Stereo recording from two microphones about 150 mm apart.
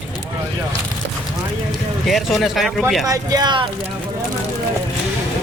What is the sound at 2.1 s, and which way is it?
Speech, centre (ahead or behind).